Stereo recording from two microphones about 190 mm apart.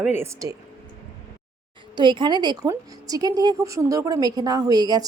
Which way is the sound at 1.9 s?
25° right (ahead or behind).